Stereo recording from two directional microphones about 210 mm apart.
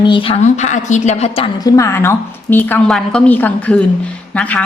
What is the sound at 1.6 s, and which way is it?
A woman's voice, 15° left (ahead or behind).